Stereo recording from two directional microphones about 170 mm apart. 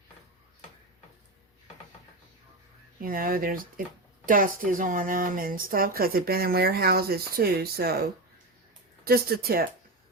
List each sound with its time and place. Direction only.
3.0 s speech: 60° right (ahead or behind)
9.0 s speech: 65° right (ahead or behind)